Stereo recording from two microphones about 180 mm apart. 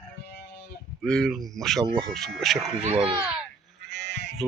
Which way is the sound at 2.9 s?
30° right (ahead or behind).